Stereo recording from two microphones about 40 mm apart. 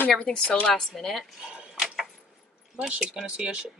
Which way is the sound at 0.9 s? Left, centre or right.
Centre.